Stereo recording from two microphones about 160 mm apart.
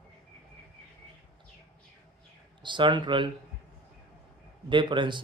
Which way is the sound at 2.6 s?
30° right (ahead or behind).